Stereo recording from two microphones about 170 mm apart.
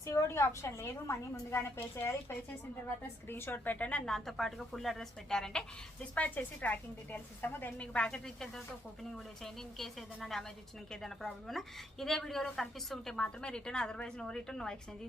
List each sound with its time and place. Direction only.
0.0 s a woman's voice: 15° left (ahead or behind)
3.2 s a woman's voice: 15° left (ahead or behind)